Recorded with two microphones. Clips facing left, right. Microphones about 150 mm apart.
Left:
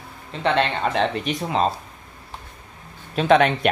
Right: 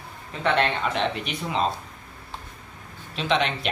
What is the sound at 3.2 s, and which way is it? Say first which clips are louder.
Speech: left 8 dB; 55° left (ahead or behind).